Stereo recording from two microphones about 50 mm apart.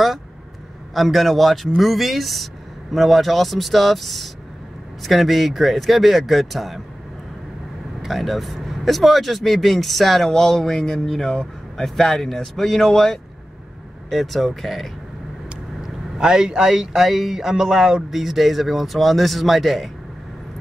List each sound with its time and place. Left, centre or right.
0.9 s speech: centre
8.0 s speech: centre
15.8 s speech: centre